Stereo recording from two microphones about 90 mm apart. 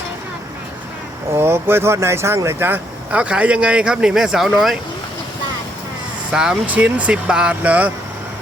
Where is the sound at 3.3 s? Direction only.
10° right (ahead or behind).